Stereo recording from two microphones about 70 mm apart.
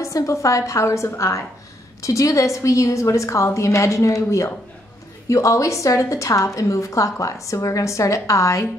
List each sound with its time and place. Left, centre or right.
0.0 s a woman's voice: left